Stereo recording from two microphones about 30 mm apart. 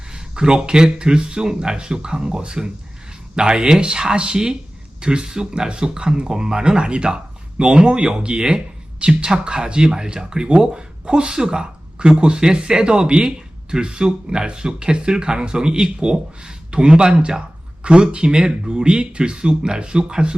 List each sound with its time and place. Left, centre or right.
0.1 s speech: right